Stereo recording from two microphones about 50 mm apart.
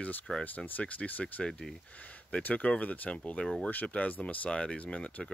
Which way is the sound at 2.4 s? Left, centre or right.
Left.